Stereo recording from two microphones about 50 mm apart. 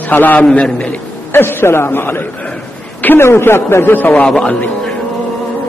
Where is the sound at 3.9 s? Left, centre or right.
Left.